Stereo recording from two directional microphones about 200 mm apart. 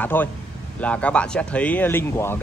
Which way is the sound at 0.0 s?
10° left (ahead or behind).